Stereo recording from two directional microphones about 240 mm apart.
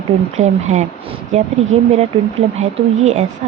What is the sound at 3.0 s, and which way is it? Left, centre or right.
Speech, right.